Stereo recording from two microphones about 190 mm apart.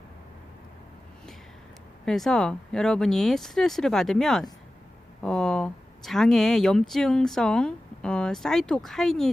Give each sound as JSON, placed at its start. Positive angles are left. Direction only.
{"t": 2.0, "sound": "speech", "side_deg": 0}